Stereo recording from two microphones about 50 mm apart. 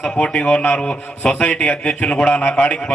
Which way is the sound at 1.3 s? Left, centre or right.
Left.